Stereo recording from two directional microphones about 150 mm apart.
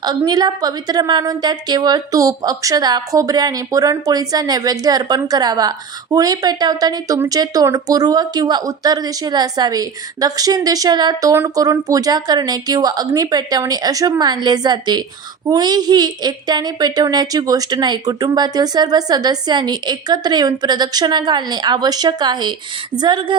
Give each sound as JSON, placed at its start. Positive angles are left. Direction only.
{"t": 0.3, "sound": "a woman's voice", "side_deg": -25}